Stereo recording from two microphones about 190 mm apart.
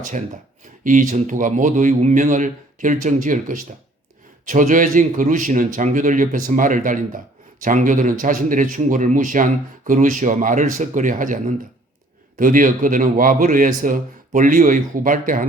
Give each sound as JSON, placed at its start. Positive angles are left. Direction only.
{"t": 0.6, "sound": "speech", "side_deg": -40}